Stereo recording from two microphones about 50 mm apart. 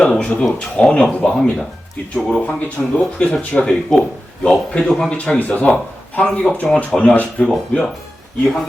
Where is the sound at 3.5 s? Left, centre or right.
Centre.